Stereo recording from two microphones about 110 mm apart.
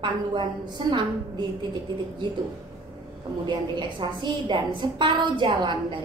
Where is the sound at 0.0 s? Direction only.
45° right (ahead or behind).